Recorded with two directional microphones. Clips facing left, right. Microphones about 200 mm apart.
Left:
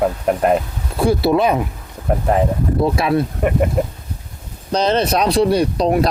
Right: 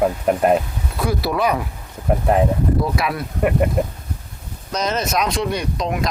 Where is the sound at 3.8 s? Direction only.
Centre (ahead or behind).